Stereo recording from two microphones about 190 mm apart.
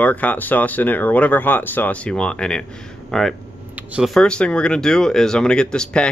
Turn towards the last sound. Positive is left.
turn(degrees=5)  # may be behind; listen again after turning